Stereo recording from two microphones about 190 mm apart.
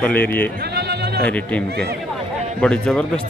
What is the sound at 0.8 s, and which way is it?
Sheep, 60° right (ahead or behind).